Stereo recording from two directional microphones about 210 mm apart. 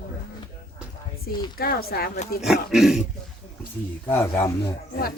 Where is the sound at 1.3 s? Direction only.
45° left (ahead or behind).